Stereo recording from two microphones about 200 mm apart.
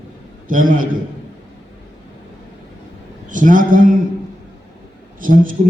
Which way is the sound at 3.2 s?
40° right (ahead or behind).